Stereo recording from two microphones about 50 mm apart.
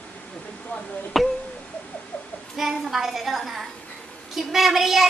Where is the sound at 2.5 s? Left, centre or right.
Centre.